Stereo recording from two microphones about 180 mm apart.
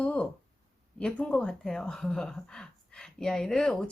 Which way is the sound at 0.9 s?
5° left (ahead or behind).